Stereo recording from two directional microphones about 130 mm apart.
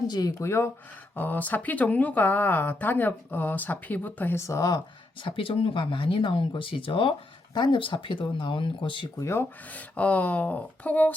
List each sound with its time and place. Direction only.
0.1 s speech: 30° left (ahead or behind)
5.2 s speech: 45° left (ahead or behind)
9.2 s speech: 15° left (ahead or behind)